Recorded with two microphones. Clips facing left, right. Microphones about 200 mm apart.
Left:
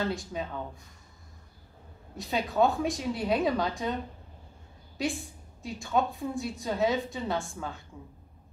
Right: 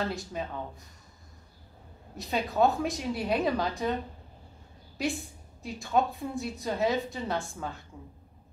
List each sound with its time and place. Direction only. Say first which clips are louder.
0.0 s a woman's voice: left 1 dB; centre (ahead or behind)
2.1 s a woman's voice: left 1 dB; centre (ahead or behind)
4.9 s a woman's voice: even; centre (ahead or behind)